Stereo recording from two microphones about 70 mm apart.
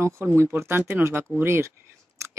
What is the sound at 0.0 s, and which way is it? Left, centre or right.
Speech, right.